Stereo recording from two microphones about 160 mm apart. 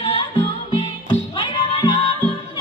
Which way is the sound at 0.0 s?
35° left (ahead or behind).